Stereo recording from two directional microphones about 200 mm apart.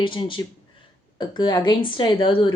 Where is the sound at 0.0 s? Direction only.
25° left (ahead or behind).